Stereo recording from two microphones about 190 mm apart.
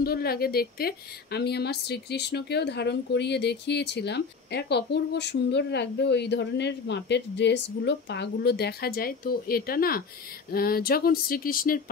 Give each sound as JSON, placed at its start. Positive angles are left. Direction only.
{"t": 0.0, "sound": "a woman's voice", "side_deg": 55}